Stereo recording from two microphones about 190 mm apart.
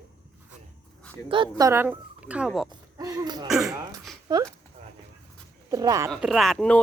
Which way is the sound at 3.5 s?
Centre (ahead or behind).